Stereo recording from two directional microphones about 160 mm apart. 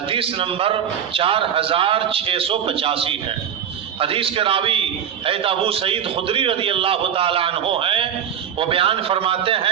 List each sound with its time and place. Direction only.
0.1 s a man's voice: 35° right (ahead or behind)